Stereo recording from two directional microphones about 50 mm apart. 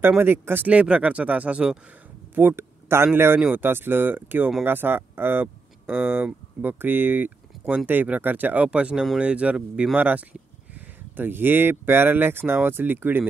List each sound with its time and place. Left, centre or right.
0.2 s speech: right
0.7 s speech: right
2.3 s speech: right
8.7 s speech: centre; by 13.3 s right